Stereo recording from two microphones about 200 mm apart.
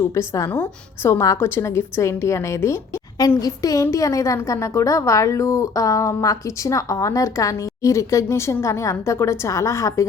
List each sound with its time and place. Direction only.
0.1 s a woman's voice: 15° left (ahead or behind)